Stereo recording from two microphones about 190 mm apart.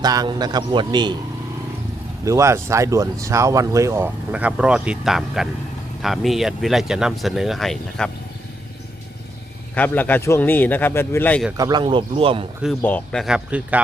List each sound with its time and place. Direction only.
0.0 s a man's voice: 20° right (ahead or behind)
2.2 s speech: 15° right (ahead or behind); by 8.1 s centre (ahead or behind)
9.7 s a man's voice: 10° left (ahead or behind)
11.5 s a man's voice: 20° right (ahead or behind)
12.8 s speech: 5° left (ahead or behind)